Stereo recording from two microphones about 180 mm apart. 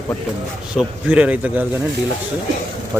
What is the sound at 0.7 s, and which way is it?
Speech, 5° right (ahead or behind).